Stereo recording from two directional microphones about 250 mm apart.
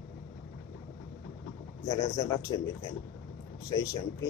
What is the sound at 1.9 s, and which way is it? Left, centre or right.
Speech, centre.